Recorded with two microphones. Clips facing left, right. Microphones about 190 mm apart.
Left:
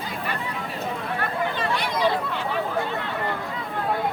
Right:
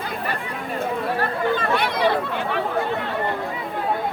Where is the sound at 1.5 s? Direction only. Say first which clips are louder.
Right 3 dB; 60° right (ahead or behind).